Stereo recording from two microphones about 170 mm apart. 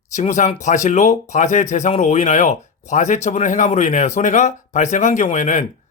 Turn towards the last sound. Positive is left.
turn(degrees=45)  # may be behind; listen again after turning